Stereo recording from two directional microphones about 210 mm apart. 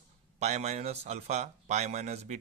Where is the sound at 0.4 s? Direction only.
30° right (ahead or behind).